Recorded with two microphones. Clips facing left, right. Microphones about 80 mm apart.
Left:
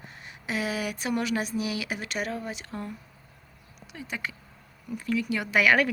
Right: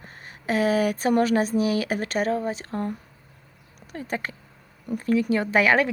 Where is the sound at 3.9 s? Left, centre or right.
Right.